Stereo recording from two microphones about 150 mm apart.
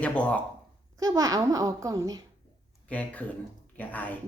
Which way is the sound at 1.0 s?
25° right (ahead or behind).